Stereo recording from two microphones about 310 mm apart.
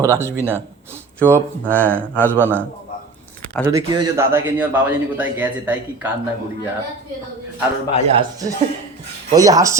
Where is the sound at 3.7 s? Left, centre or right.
Centre.